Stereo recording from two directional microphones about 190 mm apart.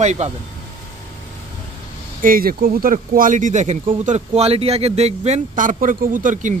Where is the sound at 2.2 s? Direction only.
50° right (ahead or behind).